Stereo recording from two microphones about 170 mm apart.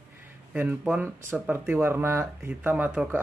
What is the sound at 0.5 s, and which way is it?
Speech, 5° right (ahead or behind).